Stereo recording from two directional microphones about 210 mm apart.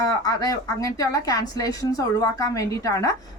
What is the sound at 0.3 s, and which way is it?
A woman's voice, 15° left (ahead or behind).